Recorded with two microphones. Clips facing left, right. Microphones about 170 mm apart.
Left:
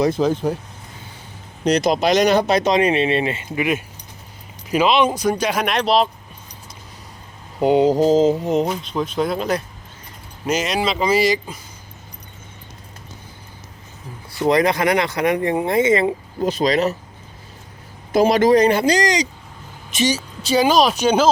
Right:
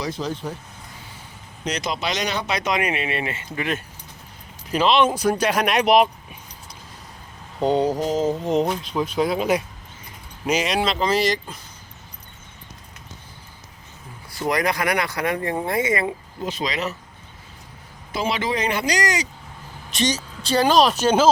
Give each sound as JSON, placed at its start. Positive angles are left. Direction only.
{"t": 0.0, "sound": "speech", "side_deg": 50}
{"t": 1.6, "sound": "speech", "side_deg": 35}
{"t": 2.6, "sound": "speech", "side_deg": 25}
{"t": 3.6, "sound": "speech", "side_deg": 10}
{"t": 5.0, "sound": "speech", "side_deg": -5}
{"t": 5.5, "sound": "speech", "side_deg": 5}
{"t": 5.8, "sound": "speech", "side_deg": -15}
{"t": 7.6, "sound": "speech", "side_deg": 15}
{"t": 8.0, "sound": "speech", "side_deg": 30}
{"t": 8.4, "sound": "speech", "side_deg": 5}
{"t": 14.3, "sound": "speech", "side_deg": 25}
{"t": 16.4, "sound": "speech", "side_deg": 40}
{"t": 18.1, "sound": "speech", "side_deg": 45}
{"t": 19.9, "sound": "speech", "side_deg": 5}